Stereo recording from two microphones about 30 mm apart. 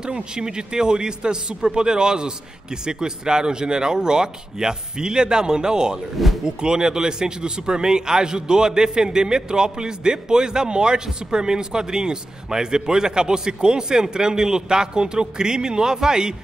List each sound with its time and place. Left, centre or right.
0.0 s a man's voice: right